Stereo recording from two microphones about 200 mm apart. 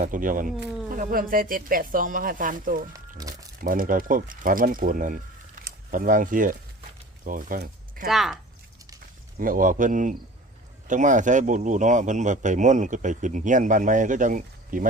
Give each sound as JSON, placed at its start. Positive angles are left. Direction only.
{"t": 0.0, "sound": "speech", "side_deg": -40}
{"t": 3.2, "sound": "speech", "side_deg": -15}
{"t": 3.6, "sound": "speech", "side_deg": -45}
{"t": 8.0, "sound": "speech", "side_deg": 0}
{"t": 9.4, "sound": "speech", "side_deg": -45}